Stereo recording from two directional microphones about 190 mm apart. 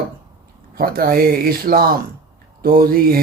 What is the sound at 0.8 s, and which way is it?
Mantra, 50° right (ahead or behind).